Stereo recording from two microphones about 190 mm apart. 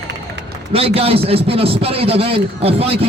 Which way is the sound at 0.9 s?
30° right (ahead or behind).